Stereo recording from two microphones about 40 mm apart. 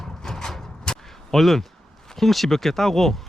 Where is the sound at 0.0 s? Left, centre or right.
Centre.